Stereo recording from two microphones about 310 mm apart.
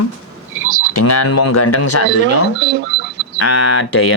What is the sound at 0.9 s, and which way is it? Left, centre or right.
Speech, left.